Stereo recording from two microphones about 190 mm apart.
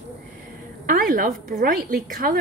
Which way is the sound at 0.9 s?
45° right (ahead or behind).